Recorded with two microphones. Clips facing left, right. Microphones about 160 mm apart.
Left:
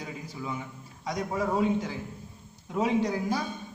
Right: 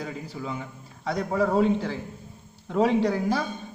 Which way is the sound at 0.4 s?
35° right (ahead or behind).